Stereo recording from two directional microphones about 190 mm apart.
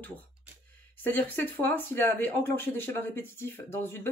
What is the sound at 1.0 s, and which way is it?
Speech, 10° left (ahead or behind).